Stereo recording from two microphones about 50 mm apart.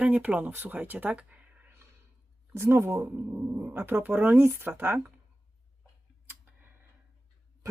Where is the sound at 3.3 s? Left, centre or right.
Right.